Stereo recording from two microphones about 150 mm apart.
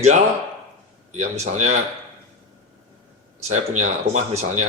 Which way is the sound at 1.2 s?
50° right (ahead or behind).